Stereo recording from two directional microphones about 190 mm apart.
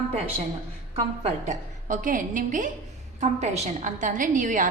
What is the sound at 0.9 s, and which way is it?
A woman's voice, 35° right (ahead or behind).